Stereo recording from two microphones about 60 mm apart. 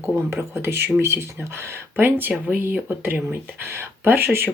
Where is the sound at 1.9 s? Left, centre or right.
Right.